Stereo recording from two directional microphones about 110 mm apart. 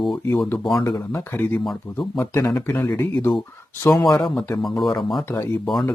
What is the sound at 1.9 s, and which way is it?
Speech, 55° left (ahead or behind).